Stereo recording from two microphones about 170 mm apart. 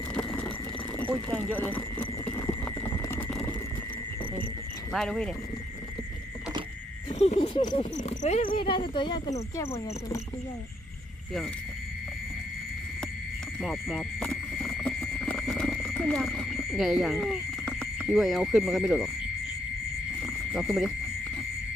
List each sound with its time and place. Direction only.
2.3 s clip-clop: 20° left (ahead or behind)
3.2 s a sound: 5° left (ahead or behind)
4.9 s speech: 5° left (ahead or behind)
7.1 s speech: 35° left (ahead or behind)
7.9 s cricket: 45° left (ahead or behind)
8.4 s speech: 30° left (ahead or behind)
13.6 s horse: centre (ahead or behind)
20.2 s wild animals: centre (ahead or behind)